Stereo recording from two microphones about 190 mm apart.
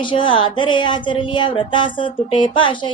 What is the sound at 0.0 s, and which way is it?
A woman's voice, 25° left (ahead or behind).